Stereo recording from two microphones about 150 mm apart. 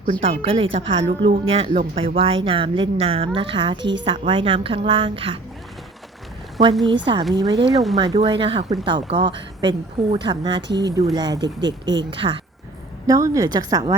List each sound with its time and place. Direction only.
0.2 s a woman's voice: 40° right (ahead or behind)
6.8 s a woman's voice: 30° right (ahead or behind)
13.1 s speech: 20° right (ahead or behind)